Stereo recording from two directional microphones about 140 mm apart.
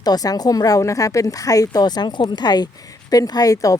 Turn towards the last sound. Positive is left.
turn(degrees=25)  # may be behind; listen again after turning